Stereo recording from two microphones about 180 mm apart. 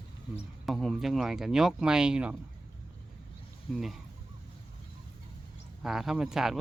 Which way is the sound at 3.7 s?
Centre (ahead or behind).